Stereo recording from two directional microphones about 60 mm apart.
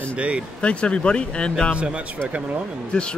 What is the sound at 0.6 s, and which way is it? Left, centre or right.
Speech, centre.